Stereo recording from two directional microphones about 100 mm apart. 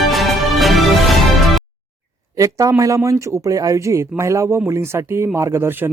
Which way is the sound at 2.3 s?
35° right (ahead or behind).